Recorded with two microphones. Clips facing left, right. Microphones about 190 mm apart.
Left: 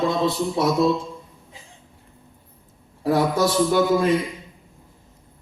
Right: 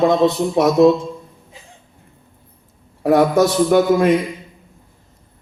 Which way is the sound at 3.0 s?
70° right (ahead or behind).